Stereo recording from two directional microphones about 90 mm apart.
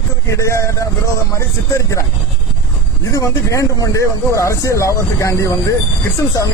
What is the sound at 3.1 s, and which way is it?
Speech, 35° left (ahead or behind).